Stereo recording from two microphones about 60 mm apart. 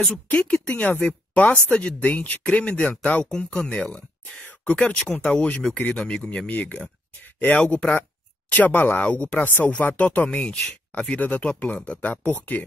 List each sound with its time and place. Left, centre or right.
0.0 s speech: centre
4.5 s a sound: left
4.9 s speech: centre
11.1 s speech: left